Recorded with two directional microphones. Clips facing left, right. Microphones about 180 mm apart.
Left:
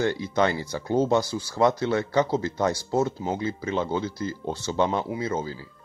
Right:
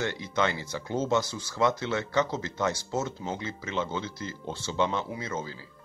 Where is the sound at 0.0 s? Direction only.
35° left (ahead or behind).